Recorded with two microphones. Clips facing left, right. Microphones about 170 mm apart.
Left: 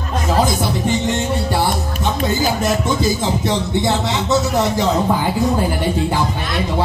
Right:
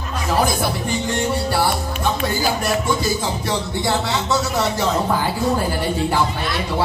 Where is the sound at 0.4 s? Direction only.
20° left (ahead or behind).